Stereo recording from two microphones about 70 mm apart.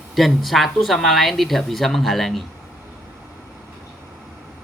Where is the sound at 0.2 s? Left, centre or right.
Centre.